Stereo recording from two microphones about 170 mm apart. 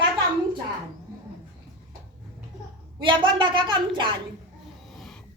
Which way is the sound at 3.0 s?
30° right (ahead or behind).